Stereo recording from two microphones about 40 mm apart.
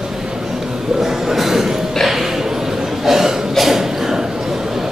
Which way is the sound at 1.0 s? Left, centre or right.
Centre.